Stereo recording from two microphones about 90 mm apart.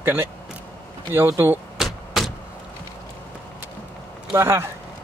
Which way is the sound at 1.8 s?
Centre (ahead or behind).